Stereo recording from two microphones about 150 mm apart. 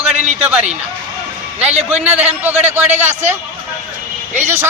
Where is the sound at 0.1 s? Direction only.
45° right (ahead or behind).